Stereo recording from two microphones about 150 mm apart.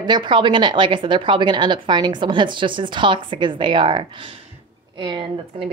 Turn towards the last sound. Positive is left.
turn(degrees=-35)  # may be behind; listen again after turning